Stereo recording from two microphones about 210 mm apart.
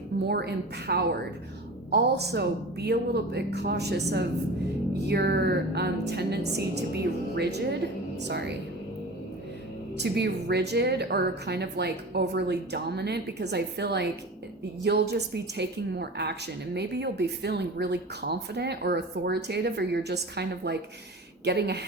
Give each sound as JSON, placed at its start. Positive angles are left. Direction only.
{"t": 0.3, "sound": "a woman's voice", "side_deg": -50}
{"t": 10.0, "sound": "a woman's voice", "side_deg": -50}